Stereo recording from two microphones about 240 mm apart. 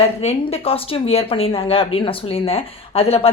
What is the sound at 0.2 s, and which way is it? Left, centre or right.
A woman's voice, left.